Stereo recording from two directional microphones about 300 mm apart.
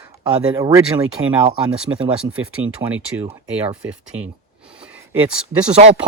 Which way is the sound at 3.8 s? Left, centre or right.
Right.